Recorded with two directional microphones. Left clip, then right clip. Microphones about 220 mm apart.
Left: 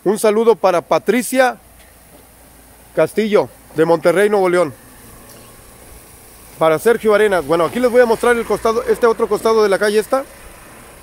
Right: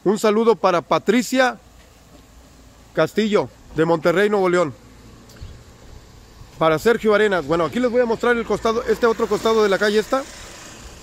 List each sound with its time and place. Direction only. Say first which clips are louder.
0.0 s speech: left 4 dB; 5° right (ahead or behind)
2.9 s speech: left 4 dB; 5° left (ahead or behind)
6.6 s speech: left 4 dB; 5° right (ahead or behind)
7.9 s speech: left 9 dB; 15° left (ahead or behind)
8.3 s speech: left 4 dB; centre (ahead or behind)
10.2 s vehicle: even; 45° right (ahead or behind)